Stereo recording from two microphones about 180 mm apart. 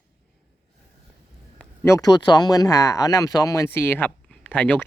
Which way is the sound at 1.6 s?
15° left (ahead or behind).